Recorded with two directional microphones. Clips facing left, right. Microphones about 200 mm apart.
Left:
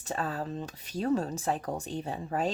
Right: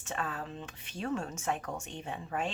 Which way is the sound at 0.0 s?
35° left (ahead or behind).